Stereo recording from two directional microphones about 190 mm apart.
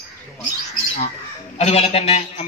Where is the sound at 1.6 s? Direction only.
35° left (ahead or behind).